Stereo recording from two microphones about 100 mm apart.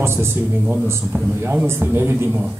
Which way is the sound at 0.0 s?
25° right (ahead or behind).